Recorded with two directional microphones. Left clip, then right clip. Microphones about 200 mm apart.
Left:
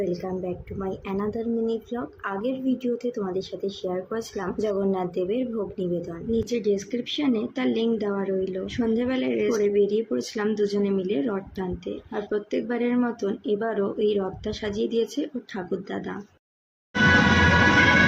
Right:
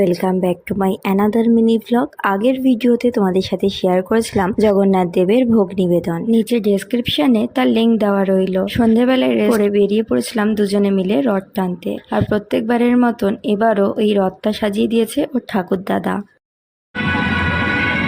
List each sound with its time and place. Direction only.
0.0 s speech: 55° right (ahead or behind)